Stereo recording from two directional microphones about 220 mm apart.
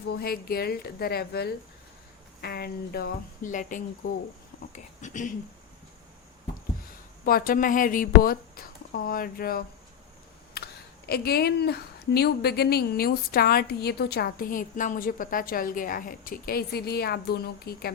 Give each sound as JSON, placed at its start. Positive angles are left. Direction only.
{"t": 0.1, "sound": "speech", "side_deg": 45}
{"t": 7.3, "sound": "a woman's voice", "side_deg": 40}
{"t": 10.6, "sound": "a sound", "side_deg": 45}
{"t": 11.1, "sound": "speech", "side_deg": 45}